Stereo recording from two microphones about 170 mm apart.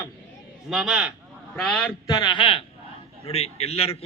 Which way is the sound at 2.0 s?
25° left (ahead or behind).